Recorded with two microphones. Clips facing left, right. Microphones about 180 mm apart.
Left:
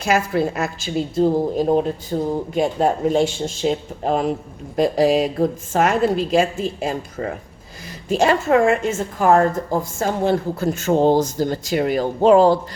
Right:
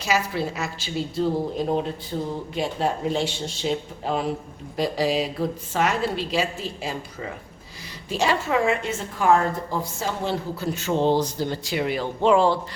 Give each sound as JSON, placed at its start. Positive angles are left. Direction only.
{"t": 0.0, "sound": "a woman's voice", "side_deg": 50}